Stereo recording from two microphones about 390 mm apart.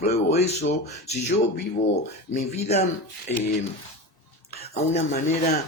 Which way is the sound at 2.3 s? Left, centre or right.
Centre.